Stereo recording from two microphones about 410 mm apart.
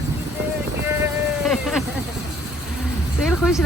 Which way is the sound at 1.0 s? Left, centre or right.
Centre.